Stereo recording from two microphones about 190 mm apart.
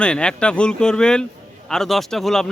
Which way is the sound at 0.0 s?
5° left (ahead or behind).